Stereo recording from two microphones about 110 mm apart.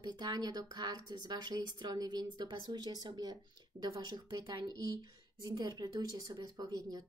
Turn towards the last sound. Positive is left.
turn(degrees=-35)  # may be behind; listen again after turning